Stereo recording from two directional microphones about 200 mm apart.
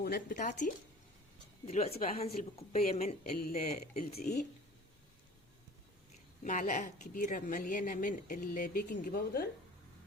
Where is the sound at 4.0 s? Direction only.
50° left (ahead or behind).